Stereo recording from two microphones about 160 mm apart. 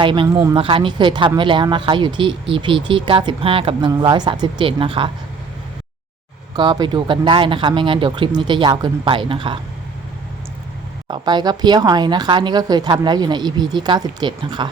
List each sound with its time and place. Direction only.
0.0 s speech: 30° right (ahead or behind)
6.6 s speech: 25° right (ahead or behind)
11.1 s speech: 25° right (ahead or behind)